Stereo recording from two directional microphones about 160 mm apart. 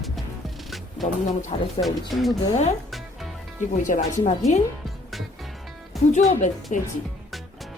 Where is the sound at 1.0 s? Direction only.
45° left (ahead or behind).